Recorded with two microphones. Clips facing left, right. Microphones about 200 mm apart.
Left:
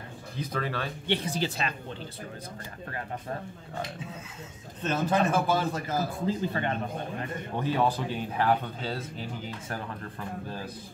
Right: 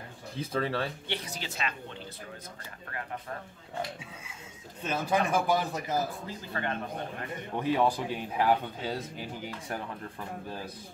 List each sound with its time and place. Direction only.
0.4 s speech: 25° right (ahead or behind)
1.0 s speech: 30° left (ahead or behind)
4.8 s speech: 10° right (ahead or behind)
6.2 s speech: 20° left (ahead or behind)
7.6 s speech: 15° right (ahead or behind)